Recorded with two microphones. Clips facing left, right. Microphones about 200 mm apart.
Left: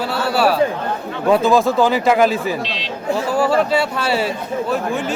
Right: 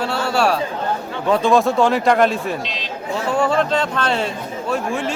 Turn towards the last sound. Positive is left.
turn(degrees=0)  # may be behind; listen again after turning